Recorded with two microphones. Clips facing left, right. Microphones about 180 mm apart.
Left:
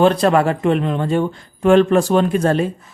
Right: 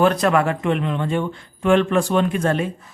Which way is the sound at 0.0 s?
30° left (ahead or behind).